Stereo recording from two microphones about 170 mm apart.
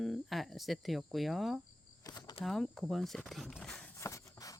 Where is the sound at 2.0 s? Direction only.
20° left (ahead or behind).